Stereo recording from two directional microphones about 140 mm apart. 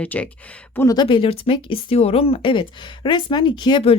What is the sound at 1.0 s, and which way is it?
Speech, 40° left (ahead or behind).